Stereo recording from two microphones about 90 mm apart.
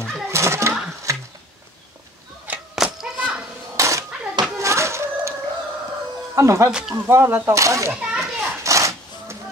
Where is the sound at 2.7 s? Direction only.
5° right (ahead or behind).